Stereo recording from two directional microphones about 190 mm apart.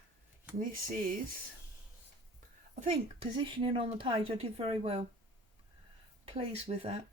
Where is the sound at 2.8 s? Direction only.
30° right (ahead or behind).